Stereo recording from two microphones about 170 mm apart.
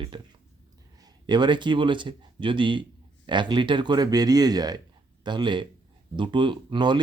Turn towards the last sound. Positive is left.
turn(degrees=-25)  # may be behind; listen again after turning